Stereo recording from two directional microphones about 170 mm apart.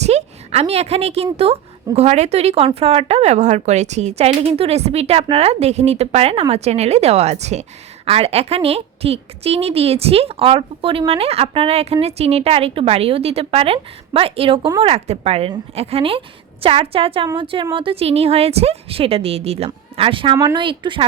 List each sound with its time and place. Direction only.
0.0 s a woman's voice: 40° right (ahead or behind)